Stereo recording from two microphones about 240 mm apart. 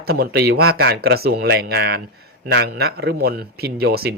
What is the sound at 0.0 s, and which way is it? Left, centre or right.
Speech, right.